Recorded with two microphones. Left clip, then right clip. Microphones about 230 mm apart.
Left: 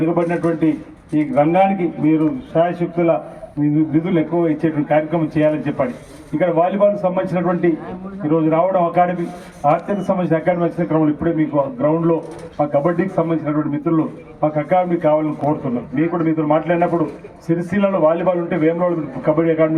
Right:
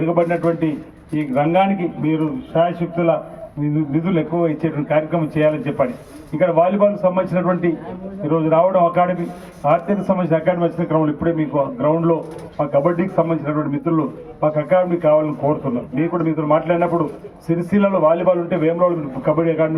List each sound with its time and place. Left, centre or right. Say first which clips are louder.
0.0 s a man's voice: right 1 dB; left